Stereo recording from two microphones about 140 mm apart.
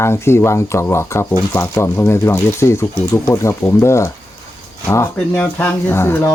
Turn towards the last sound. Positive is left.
turn(degrees=20)  # may be behind; listen again after turning